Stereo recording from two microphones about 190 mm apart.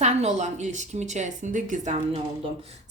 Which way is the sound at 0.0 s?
35° right (ahead or behind).